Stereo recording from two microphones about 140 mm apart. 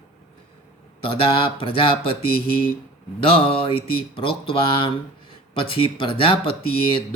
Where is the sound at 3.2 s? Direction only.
40° left (ahead or behind).